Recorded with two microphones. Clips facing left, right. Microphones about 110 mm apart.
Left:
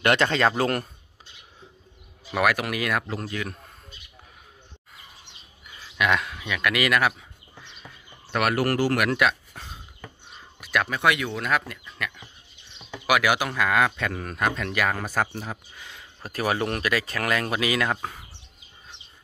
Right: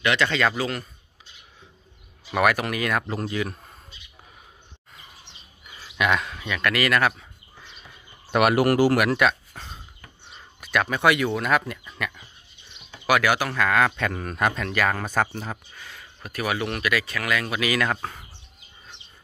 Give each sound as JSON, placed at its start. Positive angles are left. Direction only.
{"t": 0.0, "sound": "speech", "side_deg": 45}
{"t": 0.6, "sound": "a man's voice", "side_deg": 55}
{"t": 2.3, "sound": "speech", "side_deg": 0}
{"t": 5.7, "sound": "speech", "side_deg": -5}
{"t": 8.3, "sound": "speech", "side_deg": -15}
{"t": 13.0, "sound": "speech", "side_deg": 10}
{"t": 15.8, "sound": "a sound", "side_deg": 20}
{"t": 16.2, "sound": "speech", "side_deg": 35}
{"t": 17.6, "sound": "speech", "side_deg": 25}